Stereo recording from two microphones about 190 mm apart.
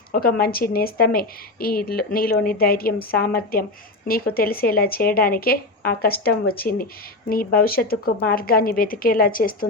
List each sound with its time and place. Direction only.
0.1 s a woman's voice: 50° left (ahead or behind)